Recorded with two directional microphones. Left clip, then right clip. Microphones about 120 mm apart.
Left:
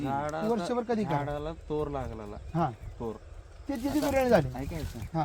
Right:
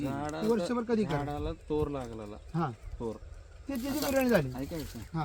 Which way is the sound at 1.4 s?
45° left (ahead or behind).